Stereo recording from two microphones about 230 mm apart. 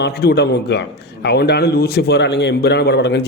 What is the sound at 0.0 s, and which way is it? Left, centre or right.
A man's voice, left.